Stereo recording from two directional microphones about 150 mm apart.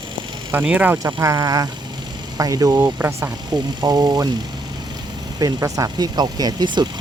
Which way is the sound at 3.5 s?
25° right (ahead or behind).